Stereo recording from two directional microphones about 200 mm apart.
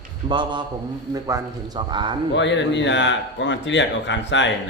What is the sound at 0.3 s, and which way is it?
A man's voice, 25° right (ahead or behind).